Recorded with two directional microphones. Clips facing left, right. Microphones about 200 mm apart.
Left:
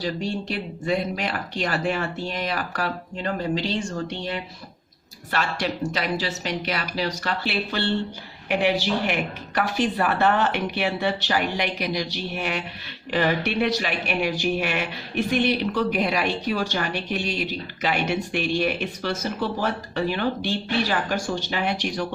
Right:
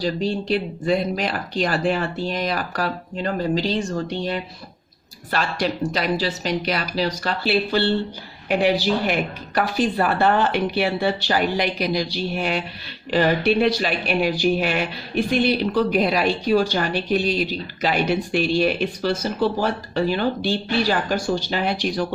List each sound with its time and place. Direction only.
0.0 s speech: 30° right (ahead or behind)